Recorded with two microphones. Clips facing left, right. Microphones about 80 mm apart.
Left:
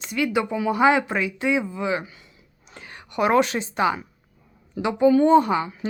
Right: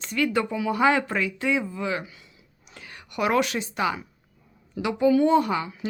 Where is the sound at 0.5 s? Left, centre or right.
Left.